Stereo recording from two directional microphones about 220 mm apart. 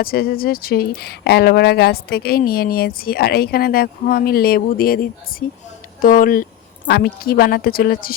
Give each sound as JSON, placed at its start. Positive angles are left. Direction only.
{"t": 0.0, "sound": "speech", "side_deg": 45}